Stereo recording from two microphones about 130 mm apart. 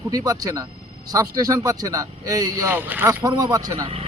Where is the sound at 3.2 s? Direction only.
30° right (ahead or behind).